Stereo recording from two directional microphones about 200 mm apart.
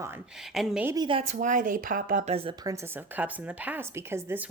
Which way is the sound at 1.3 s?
40° right (ahead or behind).